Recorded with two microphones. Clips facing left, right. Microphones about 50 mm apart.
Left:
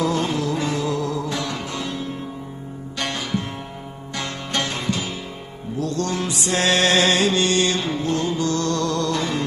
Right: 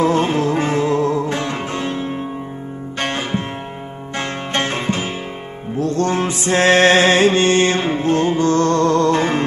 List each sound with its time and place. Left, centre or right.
0.0 s music: right